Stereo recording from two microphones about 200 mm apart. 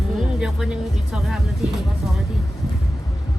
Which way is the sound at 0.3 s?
5° right (ahead or behind).